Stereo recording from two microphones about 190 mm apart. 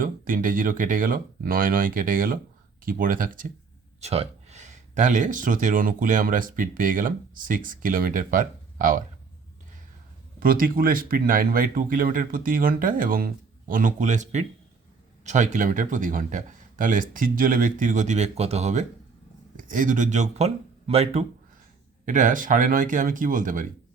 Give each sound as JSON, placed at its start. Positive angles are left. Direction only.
{"t": 0.0, "sound": "speech", "side_deg": -45}
{"t": 4.0, "sound": "speech", "side_deg": -35}
{"t": 10.4, "sound": "speech", "side_deg": -50}